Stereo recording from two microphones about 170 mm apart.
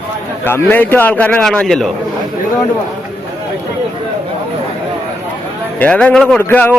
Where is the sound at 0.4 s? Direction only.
10° left (ahead or behind).